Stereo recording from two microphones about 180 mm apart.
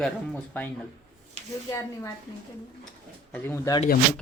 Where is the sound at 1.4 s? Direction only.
35° right (ahead or behind).